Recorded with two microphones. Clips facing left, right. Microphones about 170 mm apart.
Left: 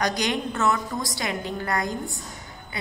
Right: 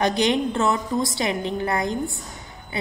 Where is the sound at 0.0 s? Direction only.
25° right (ahead or behind).